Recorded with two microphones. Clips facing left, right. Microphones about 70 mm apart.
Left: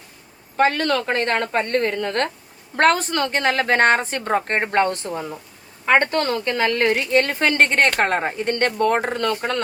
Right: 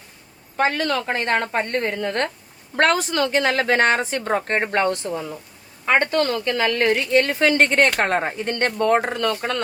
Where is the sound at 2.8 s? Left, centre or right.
Left.